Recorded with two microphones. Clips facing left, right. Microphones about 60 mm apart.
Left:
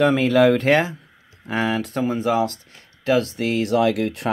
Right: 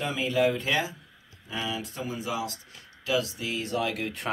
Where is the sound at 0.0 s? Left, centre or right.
Left.